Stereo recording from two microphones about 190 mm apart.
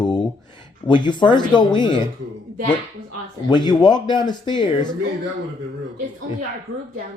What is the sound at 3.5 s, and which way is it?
Speech, 20° left (ahead or behind).